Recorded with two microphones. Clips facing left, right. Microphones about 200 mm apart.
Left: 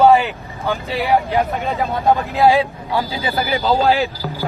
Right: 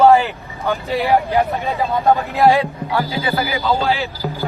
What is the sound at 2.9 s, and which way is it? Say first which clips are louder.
Speech: right 1 dB; 15° left (ahead or behind).